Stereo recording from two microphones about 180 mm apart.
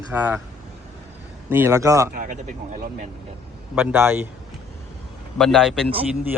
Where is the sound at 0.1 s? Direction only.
10° right (ahead or behind).